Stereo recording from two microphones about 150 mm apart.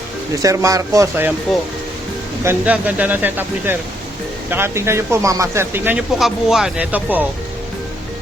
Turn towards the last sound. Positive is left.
turn(degrees=-10)  # may be behind; listen again after turning